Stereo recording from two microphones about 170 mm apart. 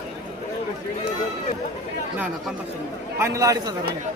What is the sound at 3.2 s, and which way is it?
Speech, 15° right (ahead or behind).